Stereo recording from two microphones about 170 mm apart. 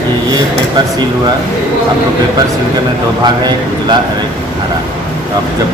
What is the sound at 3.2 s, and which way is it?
Speech, 25° right (ahead or behind).